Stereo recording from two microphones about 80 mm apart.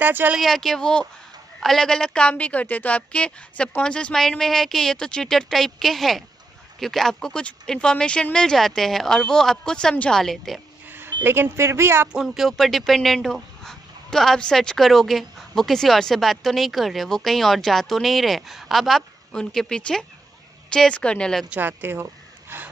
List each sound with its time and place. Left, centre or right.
0.0 s speech: right
0.4 s a woman's voice: centre
11.2 s speech: right
12.1 s a woman's voice: centre
21.5 s speech: right